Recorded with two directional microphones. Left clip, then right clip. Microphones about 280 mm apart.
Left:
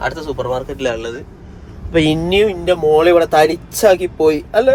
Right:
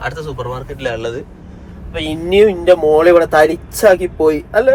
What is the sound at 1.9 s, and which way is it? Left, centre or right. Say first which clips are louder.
Speech: left 8 dB; left.